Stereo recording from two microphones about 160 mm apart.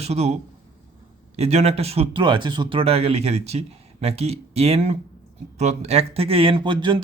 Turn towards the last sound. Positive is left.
turn(degrees=-30)  # may be behind; listen again after turning